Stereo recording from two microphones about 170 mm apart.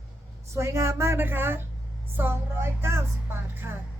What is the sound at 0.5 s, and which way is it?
A woman's voice, 15° right (ahead or behind).